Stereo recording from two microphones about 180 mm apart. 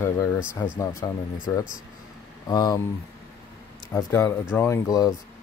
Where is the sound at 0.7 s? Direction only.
20° left (ahead or behind).